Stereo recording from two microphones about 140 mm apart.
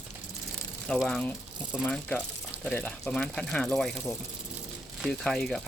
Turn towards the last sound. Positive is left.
turn(degrees=5)  # may be behind; listen again after turning